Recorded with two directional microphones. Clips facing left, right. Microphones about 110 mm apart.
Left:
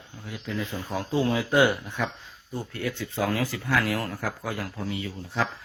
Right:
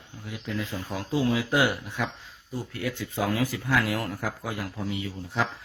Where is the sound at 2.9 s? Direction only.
15° right (ahead or behind).